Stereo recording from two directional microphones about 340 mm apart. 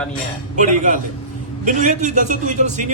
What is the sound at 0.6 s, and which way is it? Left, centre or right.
Speech, right.